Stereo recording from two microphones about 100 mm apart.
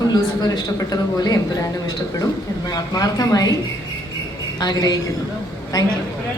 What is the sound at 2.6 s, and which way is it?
Speech, 40° left (ahead or behind).